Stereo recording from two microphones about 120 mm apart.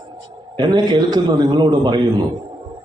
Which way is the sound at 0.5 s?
40° right (ahead or behind).